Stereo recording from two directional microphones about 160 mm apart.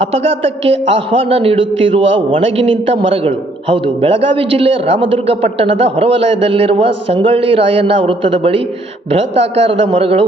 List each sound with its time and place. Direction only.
0.0 s a man's voice: 40° right (ahead or behind)